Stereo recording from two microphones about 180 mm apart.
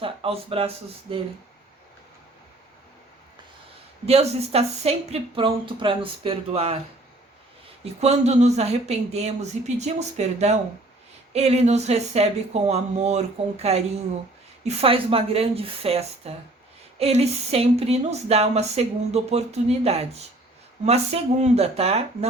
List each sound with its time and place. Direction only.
0.0 s speech: 30° right (ahead or behind)
4.0 s speech: 35° right (ahead or behind)
8.0 s speech: 35° right (ahead or behind)